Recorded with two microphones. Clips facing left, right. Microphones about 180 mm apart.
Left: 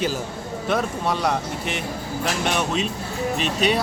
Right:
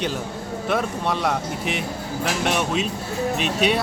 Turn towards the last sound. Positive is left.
turn(degrees=0)  # may be behind; listen again after turning